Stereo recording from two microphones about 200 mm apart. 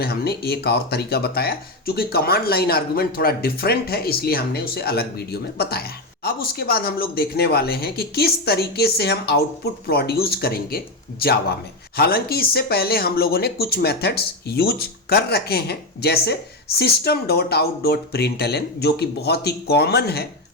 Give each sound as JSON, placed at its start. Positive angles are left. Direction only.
{"t": 0.0, "sound": "speech", "side_deg": 50}